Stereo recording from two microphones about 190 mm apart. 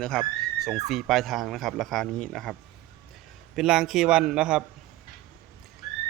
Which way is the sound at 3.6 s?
Centre (ahead or behind).